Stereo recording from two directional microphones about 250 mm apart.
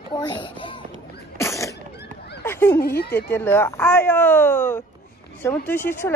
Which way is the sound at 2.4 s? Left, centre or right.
Centre.